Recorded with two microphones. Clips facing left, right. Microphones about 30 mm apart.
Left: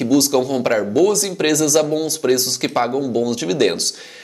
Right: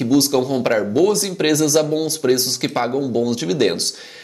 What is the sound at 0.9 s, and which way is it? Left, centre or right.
Speech, centre.